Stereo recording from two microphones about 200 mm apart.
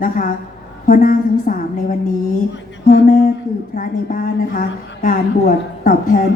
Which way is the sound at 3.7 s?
45° left (ahead or behind).